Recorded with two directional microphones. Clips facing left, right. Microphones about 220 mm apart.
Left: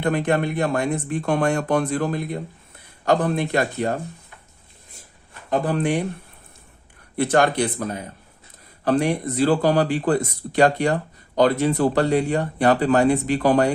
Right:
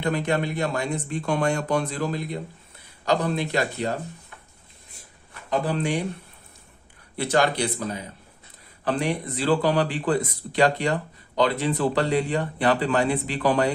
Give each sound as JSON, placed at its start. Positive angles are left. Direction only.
{"t": 0.0, "sound": "speech", "side_deg": 50}
{"t": 5.5, "sound": "speech", "side_deg": 50}
{"t": 7.2, "sound": "speech", "side_deg": 50}